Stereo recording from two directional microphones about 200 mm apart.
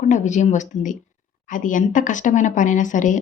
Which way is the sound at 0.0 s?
40° left (ahead or behind).